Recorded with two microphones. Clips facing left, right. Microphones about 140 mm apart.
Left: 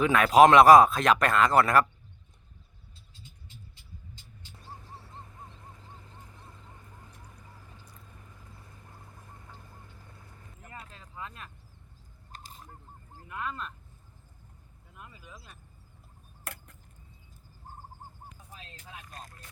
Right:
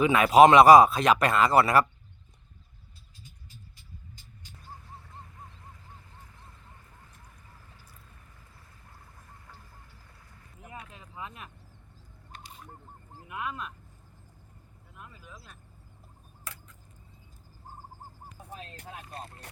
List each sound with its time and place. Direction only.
0.0 s speech: 5° right (ahead or behind)
9.5 s duck: 20° left (ahead or behind)
10.6 s a sound: 15° right (ahead or behind)
12.3 s bird: 40° left (ahead or behind)
13.2 s a sound: 15° right (ahead or behind)
14.9 s a sound: centre (ahead or behind)
16.4 s tick-tock: 60° left (ahead or behind)
18.5 s vehicle: 50° right (ahead or behind)
19.0 s music: 30° right (ahead or behind)